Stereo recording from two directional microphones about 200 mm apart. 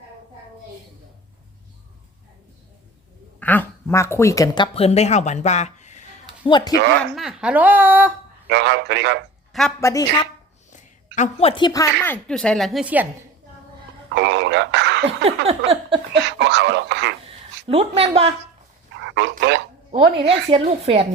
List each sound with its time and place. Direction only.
3.4 s speech: 10° left (ahead or behind); by 6.5 s 35° left (ahead or behind)
7.0 s a woman's voice: centre (ahead or behind)
8.4 s a sound: 60° right (ahead or behind)
9.5 s speech: centre (ahead or behind)
9.8 s a woman's voice: 20° left (ahead or behind)
10.7 s a woman's voice: 35° left (ahead or behind); by 13.1 s 5° right (ahead or behind)
14.1 s speech: 60° right (ahead or behind)
15.4 s a woman's voice: 30° right (ahead or behind)
16.1 s a sound: 60° right (ahead or behind)
17.7 s a woman's voice: 30° right (ahead or behind)
18.9 s a sound: 60° right (ahead or behind)
19.9 s a woman's voice: 30° right (ahead or behind)